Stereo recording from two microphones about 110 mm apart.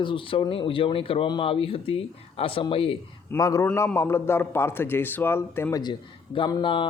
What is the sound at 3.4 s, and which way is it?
A man's voice, 30° left (ahead or behind).